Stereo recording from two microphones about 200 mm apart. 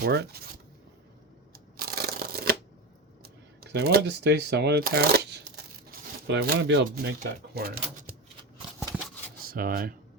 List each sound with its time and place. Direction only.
0.0 s speech: 55° right (ahead or behind)
1.7 s a sound: 50° right (ahead or behind)
3.2 s speech: 55° right (ahead or behind)
9.5 s speech: 45° right (ahead or behind)